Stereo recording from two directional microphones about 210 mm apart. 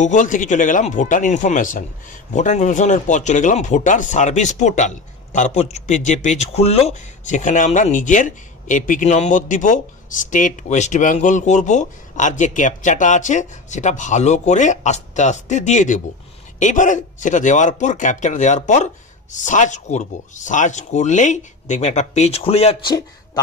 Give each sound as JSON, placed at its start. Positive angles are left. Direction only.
{"t": 0.0, "sound": "speech", "side_deg": 35}